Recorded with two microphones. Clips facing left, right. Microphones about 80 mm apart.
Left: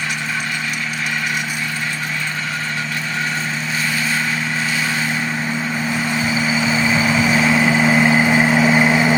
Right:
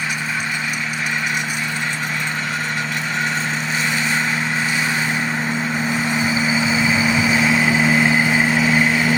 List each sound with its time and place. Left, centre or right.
6.1 s vehicle: right
6.7 s vehicle: centre